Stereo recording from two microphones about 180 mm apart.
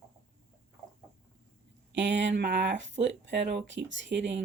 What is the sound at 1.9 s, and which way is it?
Speech, 80° right.